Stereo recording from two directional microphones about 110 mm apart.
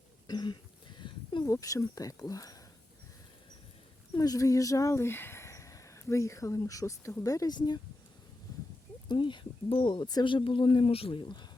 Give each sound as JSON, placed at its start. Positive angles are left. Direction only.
{"t": 0.3, "sound": "throat clearing", "side_deg": 40}
{"t": 0.9, "sound": "a sound", "side_deg": 45}
{"t": 1.5, "sound": "speech", "side_deg": 30}
{"t": 4.1, "sound": "speech", "side_deg": 35}
{"t": 9.0, "sound": "speech", "side_deg": 45}